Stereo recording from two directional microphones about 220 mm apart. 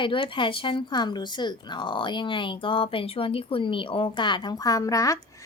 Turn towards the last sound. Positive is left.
turn(degrees=15)  # may be behind; listen again after turning